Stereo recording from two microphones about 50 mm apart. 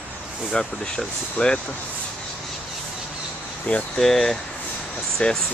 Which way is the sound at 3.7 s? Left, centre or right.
Left.